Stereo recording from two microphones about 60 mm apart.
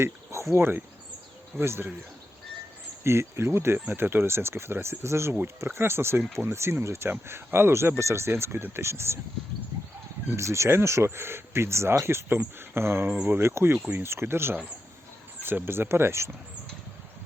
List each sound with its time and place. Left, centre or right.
0.0 s speech: right
3.0 s speech: right
10.3 s speech: right